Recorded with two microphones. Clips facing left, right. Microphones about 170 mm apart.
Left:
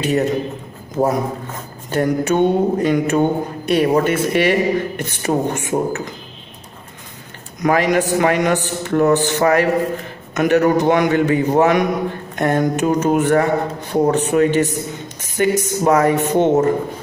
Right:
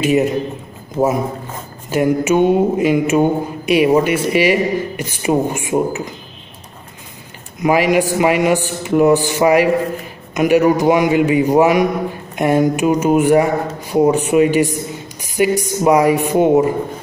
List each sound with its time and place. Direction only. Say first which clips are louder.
0.0 s speech: right 3 dB; 15° right (ahead or behind)
1.0 s speech: right 1 dB; 5° right (ahead or behind)
7.6 s speech: right 2 dB; 10° right (ahead or behind)